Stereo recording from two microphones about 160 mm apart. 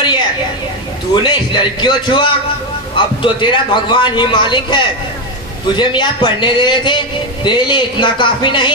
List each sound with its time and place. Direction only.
1.1 s a man's voice: 30° left (ahead or behind)